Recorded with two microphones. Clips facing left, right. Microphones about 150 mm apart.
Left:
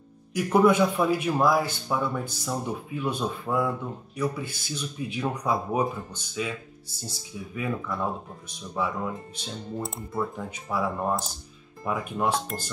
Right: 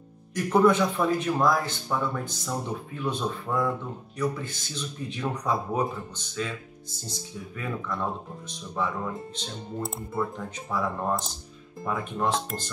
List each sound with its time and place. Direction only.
0.3 s a man's voice: 10° left (ahead or behind)